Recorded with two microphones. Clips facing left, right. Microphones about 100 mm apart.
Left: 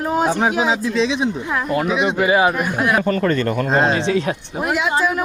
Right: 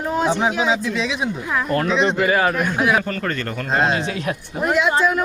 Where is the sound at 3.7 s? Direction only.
35° left (ahead or behind).